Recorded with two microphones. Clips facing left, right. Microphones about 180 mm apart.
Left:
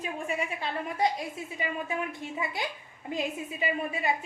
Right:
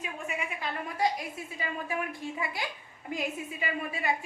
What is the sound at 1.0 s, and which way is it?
A woman's voice, 20° left (ahead or behind).